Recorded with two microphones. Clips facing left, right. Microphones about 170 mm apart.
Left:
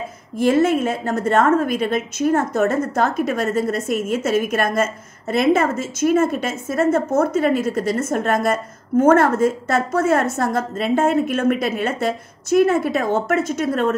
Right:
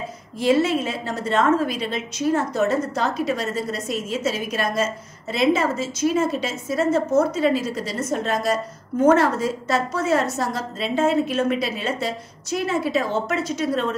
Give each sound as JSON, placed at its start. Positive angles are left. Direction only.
{"t": 0.4, "sound": "a woman's voice", "side_deg": 50}